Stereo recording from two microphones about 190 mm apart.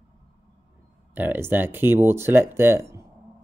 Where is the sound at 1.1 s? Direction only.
10° right (ahead or behind).